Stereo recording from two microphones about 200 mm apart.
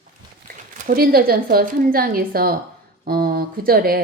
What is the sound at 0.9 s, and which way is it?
A woman's voice, 50° right (ahead or behind).